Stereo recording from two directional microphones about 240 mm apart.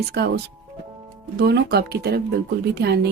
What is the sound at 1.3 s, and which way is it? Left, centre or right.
Speech, right.